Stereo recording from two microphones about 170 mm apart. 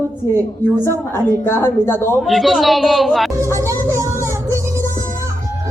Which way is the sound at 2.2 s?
Centre (ahead or behind).